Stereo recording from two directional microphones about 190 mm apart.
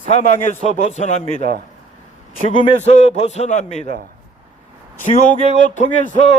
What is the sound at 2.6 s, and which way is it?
A man's voice, 35° left (ahead or behind).